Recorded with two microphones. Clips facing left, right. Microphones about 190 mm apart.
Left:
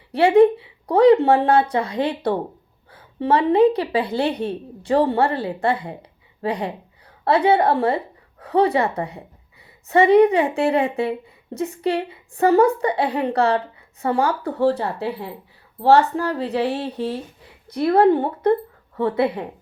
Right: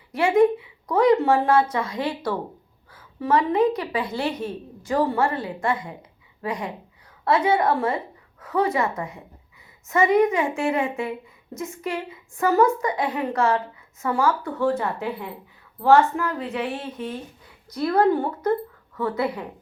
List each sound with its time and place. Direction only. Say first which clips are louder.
0.1 s a woman's voice: left 4 dB; 35° left (ahead or behind)